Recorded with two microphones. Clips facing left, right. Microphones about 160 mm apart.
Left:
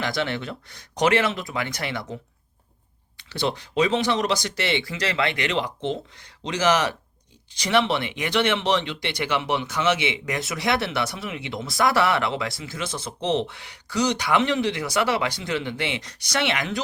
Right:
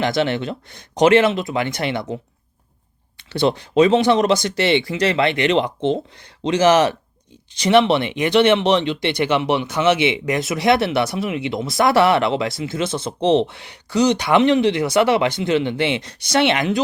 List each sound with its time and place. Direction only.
0.0 s speech: 20° right (ahead or behind)
4.5 s speech: 25° right (ahead or behind)